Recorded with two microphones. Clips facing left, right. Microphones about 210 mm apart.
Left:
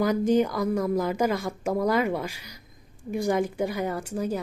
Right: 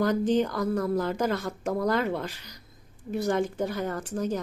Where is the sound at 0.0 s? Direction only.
10° left (ahead or behind).